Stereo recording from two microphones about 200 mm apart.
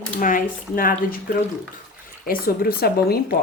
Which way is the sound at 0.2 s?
40° left (ahead or behind).